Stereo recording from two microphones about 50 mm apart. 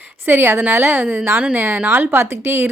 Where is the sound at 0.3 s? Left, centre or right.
Right.